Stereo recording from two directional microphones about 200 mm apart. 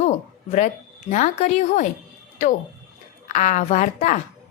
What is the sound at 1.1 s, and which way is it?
Speech, 35° left (ahead or behind).